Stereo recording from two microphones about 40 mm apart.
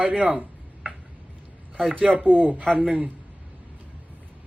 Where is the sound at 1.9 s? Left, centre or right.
Right.